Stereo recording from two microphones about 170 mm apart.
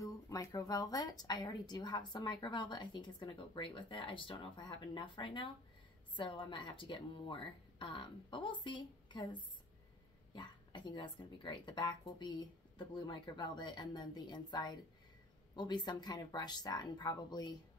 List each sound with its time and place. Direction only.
0.0 s a woman's voice: 20° left (ahead or behind)